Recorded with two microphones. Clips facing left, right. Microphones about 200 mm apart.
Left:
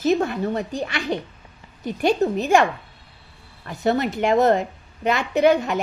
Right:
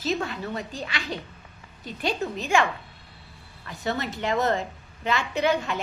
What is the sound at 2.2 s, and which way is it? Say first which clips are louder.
Speech: left 9 dB; 35° left (ahead or behind).